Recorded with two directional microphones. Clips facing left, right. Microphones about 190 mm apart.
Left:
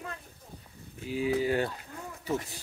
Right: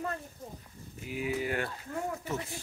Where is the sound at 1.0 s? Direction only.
30° left (ahead or behind).